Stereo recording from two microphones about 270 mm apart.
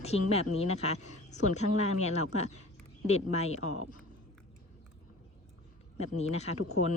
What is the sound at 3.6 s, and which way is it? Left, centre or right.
Speech, left.